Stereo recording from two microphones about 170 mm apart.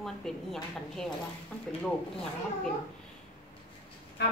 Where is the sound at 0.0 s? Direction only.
Centre (ahead or behind).